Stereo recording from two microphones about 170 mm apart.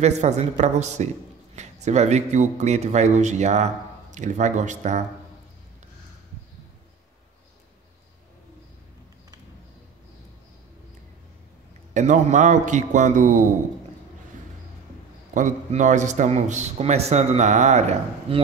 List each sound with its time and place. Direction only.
0.0 s a man's voice: 40° right (ahead or behind)
11.9 s a man's voice: 45° right (ahead or behind)
15.3 s a man's voice: 45° right (ahead or behind)